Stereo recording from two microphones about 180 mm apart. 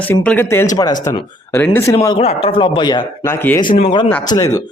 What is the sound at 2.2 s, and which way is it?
Speech, 30° left (ahead or behind).